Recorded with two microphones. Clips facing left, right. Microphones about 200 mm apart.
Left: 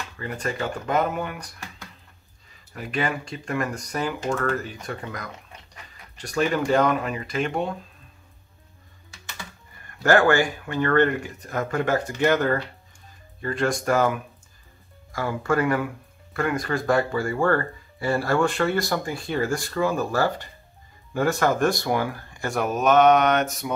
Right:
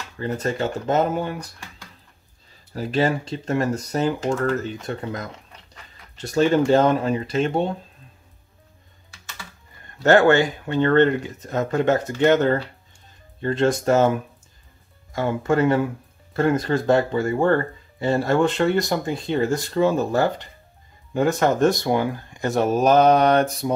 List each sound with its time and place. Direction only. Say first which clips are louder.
0.2 s speech: right 5 dB; 25° right (ahead or behind)
2.7 s speech: right 6 dB; 30° right (ahead or behind)
9.8 s speech: right 3 dB; 25° right (ahead or behind)